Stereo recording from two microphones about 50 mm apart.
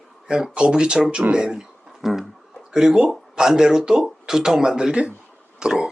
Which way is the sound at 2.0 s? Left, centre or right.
Centre.